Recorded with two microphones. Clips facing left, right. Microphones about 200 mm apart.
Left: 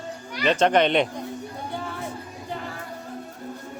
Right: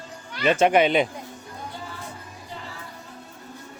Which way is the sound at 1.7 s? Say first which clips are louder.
Left 6 dB; 60° left (ahead or behind).